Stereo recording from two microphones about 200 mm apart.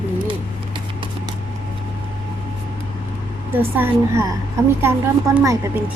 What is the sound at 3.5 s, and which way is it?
A woman's voice, 10° right (ahead or behind).